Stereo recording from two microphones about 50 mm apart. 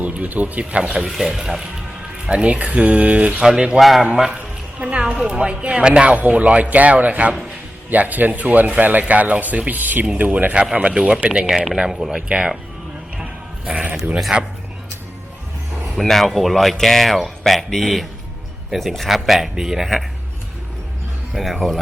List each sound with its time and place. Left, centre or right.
0.0 s speech: right
0.6 s speech: right; by 1.6 s centre
2.2 s speech: right
3.4 s speech: centre
3.8 s speech: centre
4.0 s speech: centre
4.4 s speech: right
11.4 s speech: centre
12.1 s speech: right
13.7 s bleat: right
14.2 s speech: centre
16.0 s speech: centre
21.3 s speech: centre